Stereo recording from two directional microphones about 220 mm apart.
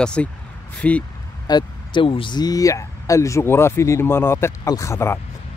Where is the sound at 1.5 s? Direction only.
20° left (ahead or behind).